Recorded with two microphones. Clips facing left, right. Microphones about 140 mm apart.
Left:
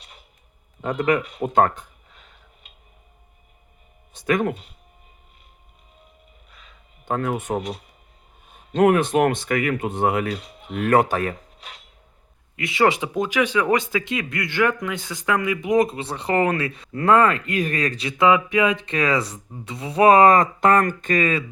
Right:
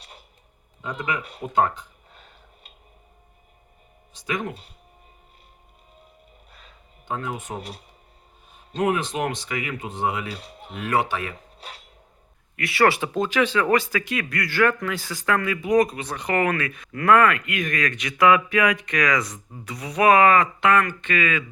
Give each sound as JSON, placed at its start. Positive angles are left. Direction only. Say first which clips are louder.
{"t": 0.8, "sound": "speech", "louder": "left 8 dB", "side_deg": 55}
{"t": 4.1, "sound": "speech", "louder": "left 7 dB", "side_deg": 55}
{"t": 7.0, "sound": "speech", "louder": "left 6 dB", "side_deg": 55}
{"t": 10.4, "sound": "speech", "louder": "left 4 dB", "side_deg": -35}
{"t": 10.8, "sound": "speech", "louder": "left 6 dB", "side_deg": 50}
{"t": 12.5, "sound": "speech", "louder": "left 1 dB", "side_deg": 20}